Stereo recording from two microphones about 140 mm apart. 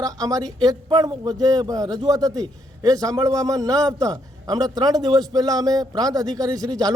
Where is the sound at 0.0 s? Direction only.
25° right (ahead or behind).